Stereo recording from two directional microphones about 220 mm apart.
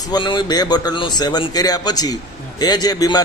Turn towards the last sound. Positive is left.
turn(degrees=15)  # may be behind; listen again after turning